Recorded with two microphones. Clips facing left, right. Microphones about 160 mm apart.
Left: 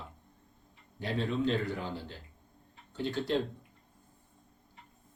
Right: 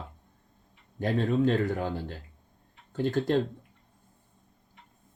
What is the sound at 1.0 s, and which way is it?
Speech, 50° right (ahead or behind).